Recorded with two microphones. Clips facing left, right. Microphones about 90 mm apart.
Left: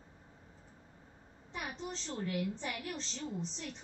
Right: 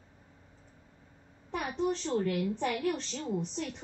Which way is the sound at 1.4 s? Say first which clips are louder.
Right 10 dB; 60° right (ahead or behind).